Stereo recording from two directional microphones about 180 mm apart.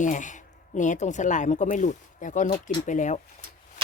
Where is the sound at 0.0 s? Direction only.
45° left (ahead or behind).